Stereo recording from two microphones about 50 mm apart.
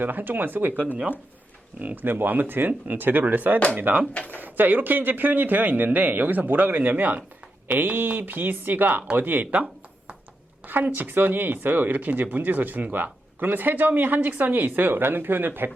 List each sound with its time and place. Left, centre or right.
0.0 s speech: right
10.7 s speech: right